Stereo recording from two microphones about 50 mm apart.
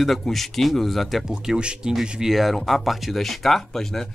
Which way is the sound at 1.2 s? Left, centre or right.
Centre.